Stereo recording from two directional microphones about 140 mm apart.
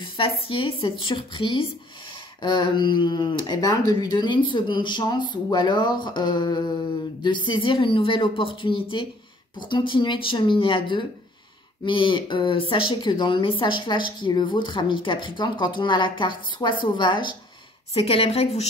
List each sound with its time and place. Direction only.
0.0 s a woman's voice: 40° left (ahead or behind)